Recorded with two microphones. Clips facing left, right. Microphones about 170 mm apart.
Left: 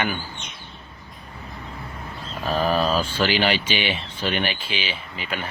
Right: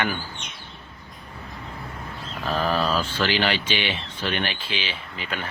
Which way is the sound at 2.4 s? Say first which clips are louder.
Left 2 dB; 15° left (ahead or behind).